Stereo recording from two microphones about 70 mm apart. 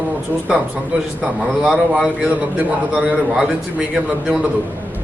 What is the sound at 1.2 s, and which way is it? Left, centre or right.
A man's voice, centre.